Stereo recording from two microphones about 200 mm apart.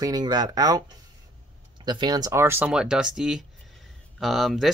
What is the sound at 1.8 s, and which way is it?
Speech, 20° right (ahead or behind).